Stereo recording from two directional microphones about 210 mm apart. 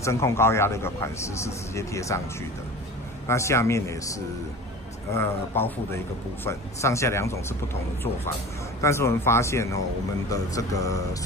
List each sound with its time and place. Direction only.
0.0 s speech: 10° left (ahead or behind)
3.3 s speech: 15° left (ahead or behind)
8.8 s speech: 15° left (ahead or behind)